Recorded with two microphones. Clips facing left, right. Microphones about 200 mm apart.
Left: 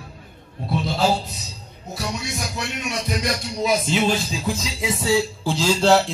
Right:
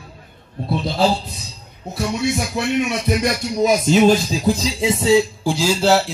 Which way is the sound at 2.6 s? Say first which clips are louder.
Right 8 dB; 60° right (ahead or behind).